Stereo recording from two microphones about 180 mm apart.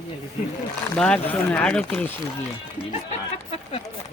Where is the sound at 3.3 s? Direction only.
35° left (ahead or behind).